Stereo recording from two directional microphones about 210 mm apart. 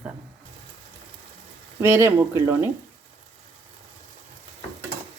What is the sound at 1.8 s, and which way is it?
Speech, 10° right (ahead or behind).